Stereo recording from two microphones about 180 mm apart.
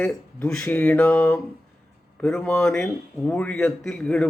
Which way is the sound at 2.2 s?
5° left (ahead or behind).